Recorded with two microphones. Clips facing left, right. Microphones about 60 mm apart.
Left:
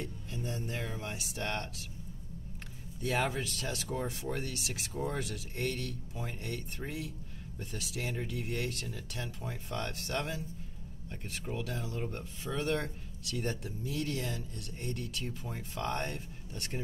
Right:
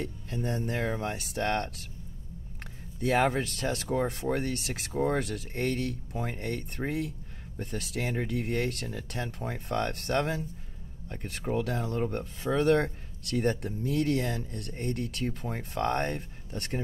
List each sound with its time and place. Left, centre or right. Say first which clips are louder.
0.0 s speech: right 6 dB; right
3.0 s speech: right 7 dB; right